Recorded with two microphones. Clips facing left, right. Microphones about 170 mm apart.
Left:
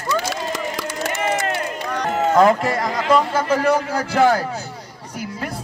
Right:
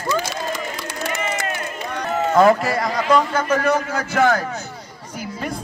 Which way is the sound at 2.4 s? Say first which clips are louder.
Right 2 dB; centre (ahead or behind).